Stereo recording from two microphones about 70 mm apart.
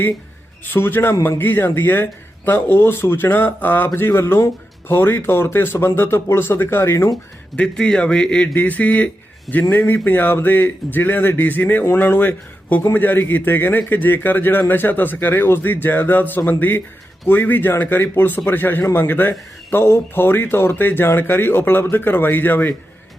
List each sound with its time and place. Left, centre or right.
0.6 s speech: left
7.5 s a man's voice: centre; by 22.7 s left